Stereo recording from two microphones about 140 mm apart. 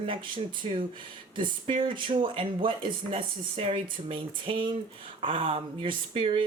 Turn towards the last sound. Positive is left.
turn(degrees=-40)  # may be behind; listen again after turning